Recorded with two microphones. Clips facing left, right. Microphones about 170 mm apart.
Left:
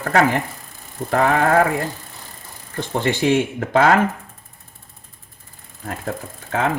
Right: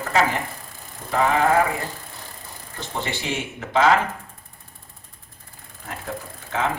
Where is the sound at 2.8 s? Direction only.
55° left (ahead or behind).